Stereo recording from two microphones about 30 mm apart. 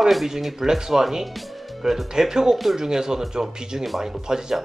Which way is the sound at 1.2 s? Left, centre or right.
Centre.